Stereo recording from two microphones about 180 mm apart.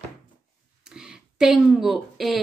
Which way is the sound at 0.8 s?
5° right (ahead or behind).